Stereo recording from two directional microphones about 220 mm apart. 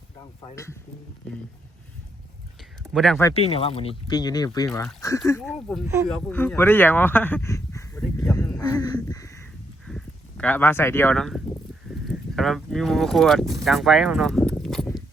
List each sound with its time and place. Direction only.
0.5 s speech: 10° left (ahead or behind)
2.9 s speech: centre (ahead or behind)
3.3 s speech: 25° left (ahead or behind)
5.5 s speech: centre (ahead or behind); by 9.0 s 15° left (ahead or behind)
9.0 s crow: 15° left (ahead or behind)
9.8 s speech: 5° left (ahead or behind)